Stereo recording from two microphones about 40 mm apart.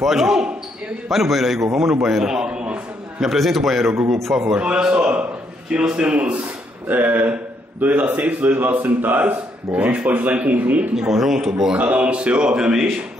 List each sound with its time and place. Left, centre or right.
0.0 s a man's voice: centre
1.1 s a man's voice: centre; by 2.8 s right
3.2 s a man's voice: centre
4.6 s a man's voice: right
6.9 s a man's voice: right
11.0 s a man's voice: centre
11.7 s speech: right; by 12.8 s centre